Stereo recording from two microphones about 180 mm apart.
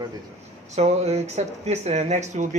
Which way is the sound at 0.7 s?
40° right (ahead or behind).